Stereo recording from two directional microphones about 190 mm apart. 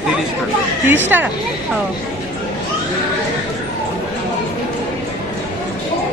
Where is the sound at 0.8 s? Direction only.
10° right (ahead or behind).